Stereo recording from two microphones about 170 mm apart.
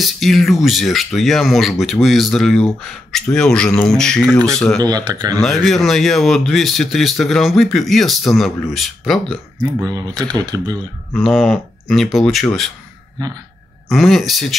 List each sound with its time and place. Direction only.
0.0 s speech: centre (ahead or behind)
4.7 s speech: 25° right (ahead or behind)
5.4 s speech: centre (ahead or behind)
9.6 s speech: 20° right (ahead or behind)
11.1 s speech: centre (ahead or behind)
13.2 s speech: 20° right (ahead or behind)
13.8 s speech: centre (ahead or behind)